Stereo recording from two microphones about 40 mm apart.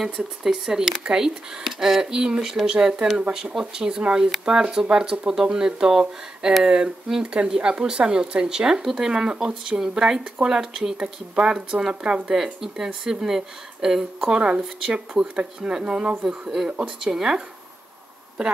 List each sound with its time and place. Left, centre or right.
0.0 s speech: centre
12.6 s speech: centre
14.3 s speech: right
16.3 s speech: centre